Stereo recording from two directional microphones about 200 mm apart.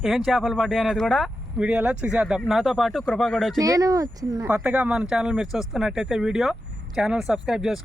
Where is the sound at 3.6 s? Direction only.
15° right (ahead or behind).